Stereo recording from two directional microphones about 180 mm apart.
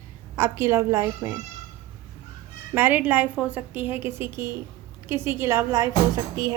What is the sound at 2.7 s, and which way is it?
A woman's voice, 10° right (ahead or behind).